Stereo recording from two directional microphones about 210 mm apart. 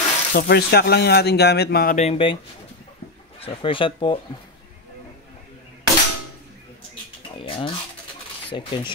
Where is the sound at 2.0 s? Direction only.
25° left (ahead or behind).